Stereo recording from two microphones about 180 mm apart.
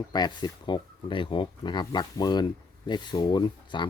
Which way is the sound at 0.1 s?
25° left (ahead or behind).